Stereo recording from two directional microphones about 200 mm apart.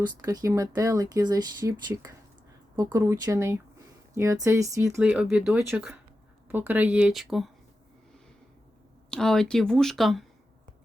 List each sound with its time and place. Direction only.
0.3 s speech: 15° right (ahead or behind)
9.0 s speech: 5° left (ahead or behind)